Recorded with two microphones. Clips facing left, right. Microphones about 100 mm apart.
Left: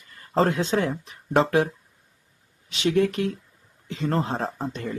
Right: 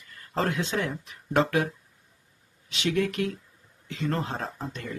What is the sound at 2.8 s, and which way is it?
Speech, 30° left (ahead or behind).